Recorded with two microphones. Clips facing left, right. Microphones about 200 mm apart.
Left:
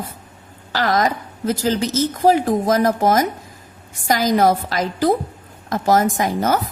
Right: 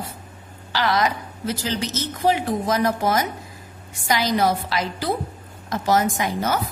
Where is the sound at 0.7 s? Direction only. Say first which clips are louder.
Left 3 dB; 45° left (ahead or behind).